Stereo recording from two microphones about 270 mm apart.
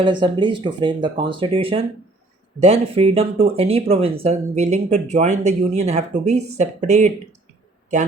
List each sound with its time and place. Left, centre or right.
0.0 s speech: centre